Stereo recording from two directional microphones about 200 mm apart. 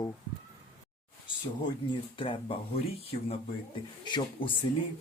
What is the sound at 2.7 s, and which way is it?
Speech, 30° left (ahead or behind).